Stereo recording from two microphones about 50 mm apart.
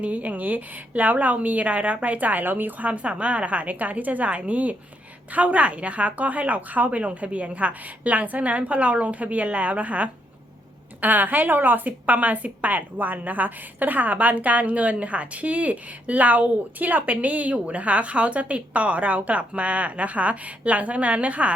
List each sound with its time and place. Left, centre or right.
0.0 s a woman's voice: right